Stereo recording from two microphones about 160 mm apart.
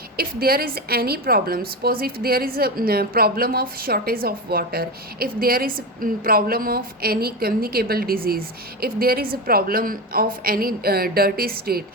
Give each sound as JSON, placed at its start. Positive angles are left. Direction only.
{"t": 0.2, "sound": "a woman's voice", "side_deg": -70}